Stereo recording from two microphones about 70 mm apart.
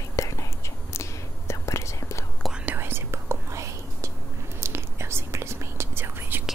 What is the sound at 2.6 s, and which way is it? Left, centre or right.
Whispering, right.